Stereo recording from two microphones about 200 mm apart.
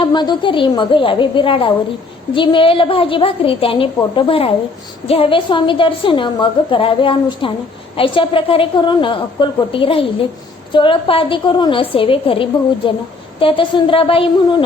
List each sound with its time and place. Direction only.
0.0 s a woman's voice: 20° left (ahead or behind)